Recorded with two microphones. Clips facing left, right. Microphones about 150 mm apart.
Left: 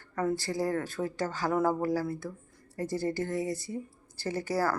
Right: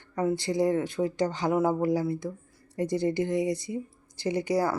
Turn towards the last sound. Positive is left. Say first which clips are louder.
# right 4 dB
turn(degrees=-20)  # may be behind; listen again after turning